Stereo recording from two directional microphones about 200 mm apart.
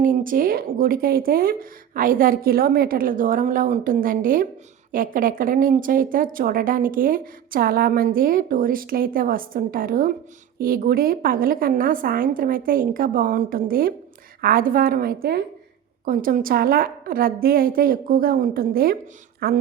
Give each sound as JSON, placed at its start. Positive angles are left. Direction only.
{"t": 0.0, "sound": "speech", "side_deg": -40}